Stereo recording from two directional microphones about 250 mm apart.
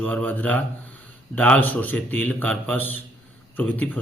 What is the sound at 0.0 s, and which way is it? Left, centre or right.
A man's voice, centre.